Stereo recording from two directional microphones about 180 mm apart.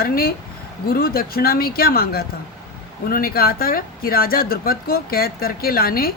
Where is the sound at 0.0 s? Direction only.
55° left (ahead or behind).